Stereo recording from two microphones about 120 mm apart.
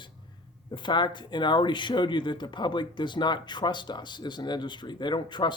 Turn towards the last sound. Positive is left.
turn(degrees=40)  # may be behind; listen again after turning